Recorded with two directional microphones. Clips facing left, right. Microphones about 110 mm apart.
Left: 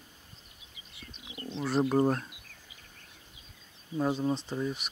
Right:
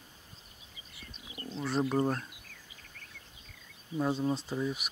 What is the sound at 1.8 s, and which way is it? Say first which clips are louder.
Speech: left 5 dB; 30° left (ahead or behind).